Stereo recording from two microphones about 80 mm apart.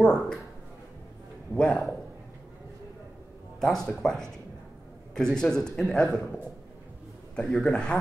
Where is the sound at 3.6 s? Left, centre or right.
Centre.